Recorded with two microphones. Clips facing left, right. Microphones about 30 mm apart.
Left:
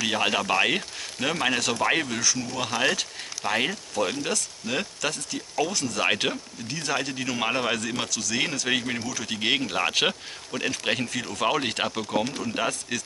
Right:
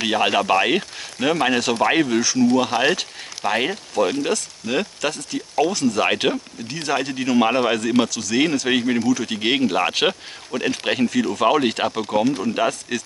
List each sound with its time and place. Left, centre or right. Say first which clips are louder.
0.0 s speech: right 5 dB; centre